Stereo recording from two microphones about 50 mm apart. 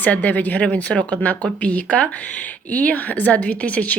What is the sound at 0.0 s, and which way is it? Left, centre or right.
Speech, left.